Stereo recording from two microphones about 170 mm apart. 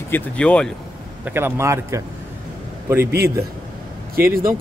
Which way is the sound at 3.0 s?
65° right (ahead or behind).